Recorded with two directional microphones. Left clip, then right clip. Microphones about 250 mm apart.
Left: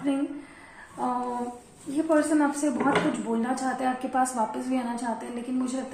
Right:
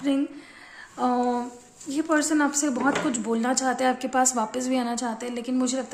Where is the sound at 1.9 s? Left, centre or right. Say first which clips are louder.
Even; right.